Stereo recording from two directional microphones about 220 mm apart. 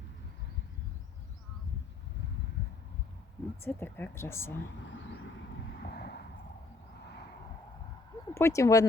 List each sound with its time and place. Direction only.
3.6 s speech: 10° left (ahead or behind)
5.8 s vehicle: 45° left (ahead or behind)
8.3 s speech: 10° left (ahead or behind)